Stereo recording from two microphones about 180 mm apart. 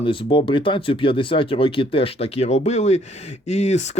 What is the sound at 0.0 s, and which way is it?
Speech, 30° left (ahead or behind).